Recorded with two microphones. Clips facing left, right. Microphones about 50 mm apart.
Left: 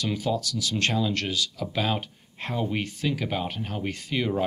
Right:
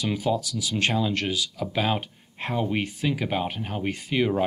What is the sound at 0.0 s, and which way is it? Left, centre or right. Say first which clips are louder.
Speech: right 2 dB; centre.